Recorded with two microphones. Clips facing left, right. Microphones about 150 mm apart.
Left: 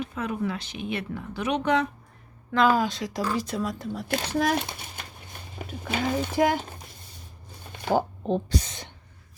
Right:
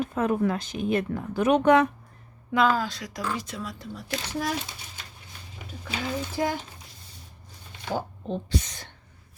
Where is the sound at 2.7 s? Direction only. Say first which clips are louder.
Left 4 dB; 20° left (ahead or behind); by 3.8 s 45° left (ahead or behind).